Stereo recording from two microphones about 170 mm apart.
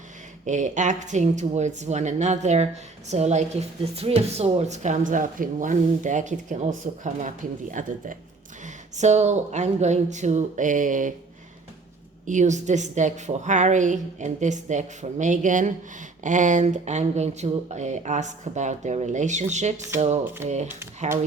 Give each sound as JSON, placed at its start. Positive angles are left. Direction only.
{"t": 0.4, "sound": "a woman's voice", "side_deg": -45}
{"t": 12.2, "sound": "a woman's voice", "side_deg": -45}